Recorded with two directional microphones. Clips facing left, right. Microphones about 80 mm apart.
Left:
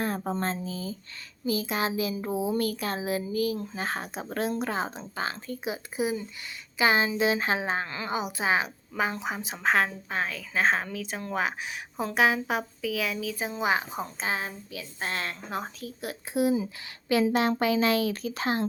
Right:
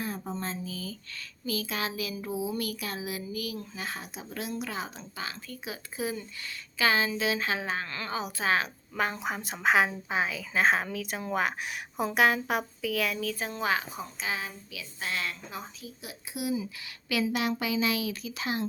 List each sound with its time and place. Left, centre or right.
0.0 s speech: left
0.5 s a child's voice: left
2.3 s a child's voice: left
14.0 s a child's voice: left
15.4 s a woman's voice: left
16.3 s a child's voice: left